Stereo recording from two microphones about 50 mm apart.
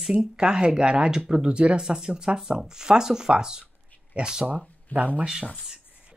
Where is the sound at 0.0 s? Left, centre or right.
Centre.